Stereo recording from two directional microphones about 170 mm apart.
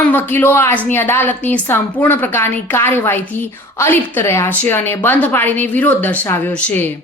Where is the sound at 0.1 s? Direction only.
10° left (ahead or behind).